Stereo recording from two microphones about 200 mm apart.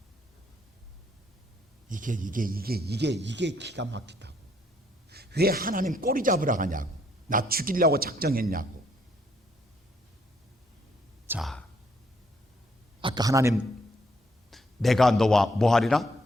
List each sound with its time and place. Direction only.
1.9 s a man's voice: 40° right (ahead or behind)
11.3 s speech: centre (ahead or behind)
13.0 s a man's voice: 20° right (ahead or behind)
14.5 s a man's voice: centre (ahead or behind)